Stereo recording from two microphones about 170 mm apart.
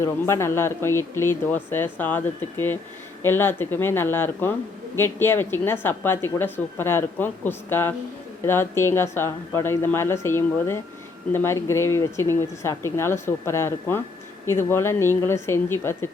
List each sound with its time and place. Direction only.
0.0 s a woman's voice: 15° left (ahead or behind)